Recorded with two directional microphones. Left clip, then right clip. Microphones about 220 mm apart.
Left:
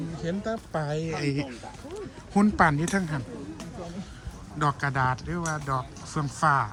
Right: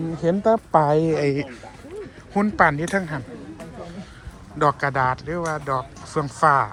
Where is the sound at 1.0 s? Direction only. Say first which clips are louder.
Right 9 dB; 5° left (ahead or behind).